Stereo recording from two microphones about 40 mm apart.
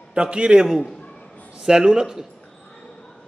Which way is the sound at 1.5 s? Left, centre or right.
Centre.